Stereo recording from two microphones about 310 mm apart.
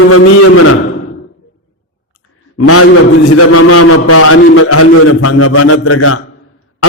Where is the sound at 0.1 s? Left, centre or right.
Left.